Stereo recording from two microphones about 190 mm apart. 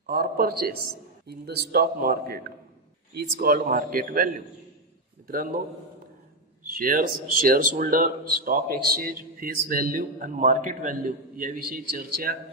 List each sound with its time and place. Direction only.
0.0 s speech: 50° right (ahead or behind)
6.6 s speech: 50° right (ahead or behind)